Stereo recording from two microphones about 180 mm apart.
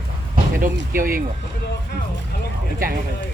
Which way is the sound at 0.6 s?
50° right (ahead or behind).